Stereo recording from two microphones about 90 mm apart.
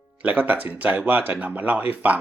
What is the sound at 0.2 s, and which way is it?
Speech, 20° right (ahead or behind).